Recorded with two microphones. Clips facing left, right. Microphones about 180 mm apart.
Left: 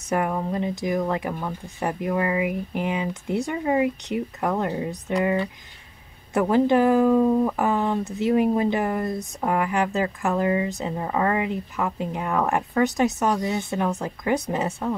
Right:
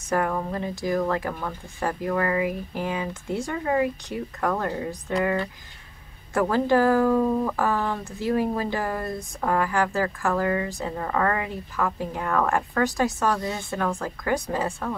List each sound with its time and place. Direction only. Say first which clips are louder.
0.1 s speech: left 1 dB; 15° left (ahead or behind)